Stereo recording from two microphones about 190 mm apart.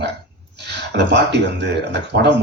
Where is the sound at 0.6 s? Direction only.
65° right (ahead or behind).